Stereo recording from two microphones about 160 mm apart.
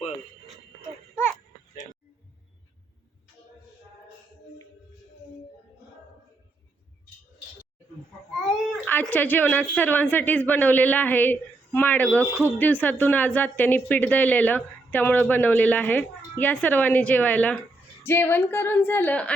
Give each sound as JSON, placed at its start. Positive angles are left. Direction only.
{"t": 1.1, "sound": "a sound", "side_deg": 15}
{"t": 8.3, "sound": "babbling", "side_deg": 0}
{"t": 8.9, "sound": "speech", "side_deg": 10}